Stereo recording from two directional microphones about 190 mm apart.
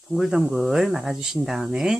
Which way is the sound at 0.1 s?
Centre (ahead or behind).